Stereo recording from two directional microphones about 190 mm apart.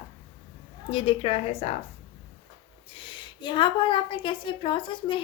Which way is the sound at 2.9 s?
25° left (ahead or behind).